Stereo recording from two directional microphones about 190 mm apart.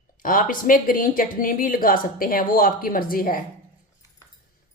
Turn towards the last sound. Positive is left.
turn(degrees=50)  # may be behind; listen again after turning